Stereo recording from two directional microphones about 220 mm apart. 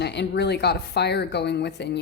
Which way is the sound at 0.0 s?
50° left (ahead or behind).